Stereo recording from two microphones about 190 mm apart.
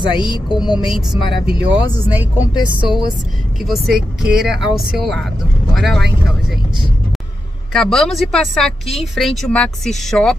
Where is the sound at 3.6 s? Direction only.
Centre (ahead or behind).